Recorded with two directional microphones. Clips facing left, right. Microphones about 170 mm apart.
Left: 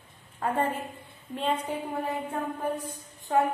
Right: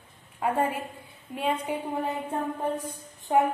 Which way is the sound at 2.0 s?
25° right (ahead or behind).